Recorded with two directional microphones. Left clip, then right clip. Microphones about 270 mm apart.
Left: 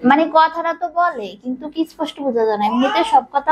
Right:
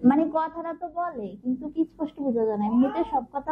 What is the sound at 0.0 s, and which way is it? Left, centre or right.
A woman's voice, centre.